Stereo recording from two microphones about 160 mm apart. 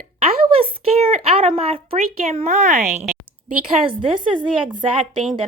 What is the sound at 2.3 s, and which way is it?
Speech, 50° right (ahead or behind).